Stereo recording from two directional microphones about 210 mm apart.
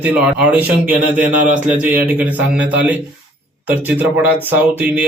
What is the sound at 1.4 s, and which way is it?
Speech, 35° right (ahead or behind).